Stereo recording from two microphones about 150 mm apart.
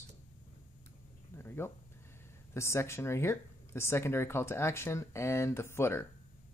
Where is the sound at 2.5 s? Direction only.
20° left (ahead or behind).